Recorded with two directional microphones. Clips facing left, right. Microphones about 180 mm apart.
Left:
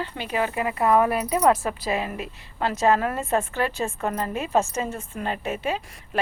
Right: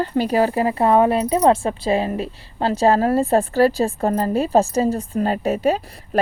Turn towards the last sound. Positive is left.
turn(degrees=-40)  # may be behind; listen again after turning